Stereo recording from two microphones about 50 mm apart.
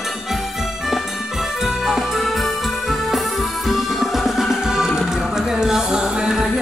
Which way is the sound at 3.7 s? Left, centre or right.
Centre.